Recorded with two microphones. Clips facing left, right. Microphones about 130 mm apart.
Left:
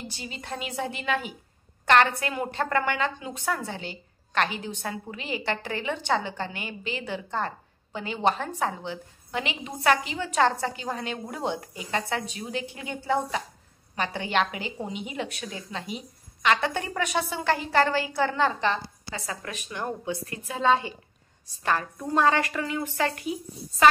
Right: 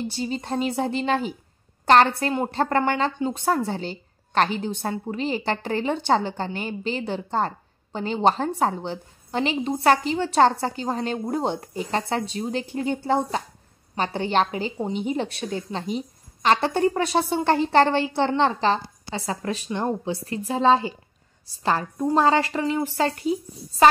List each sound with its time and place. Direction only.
0.1 s a woman's voice: 35° right (ahead or behind)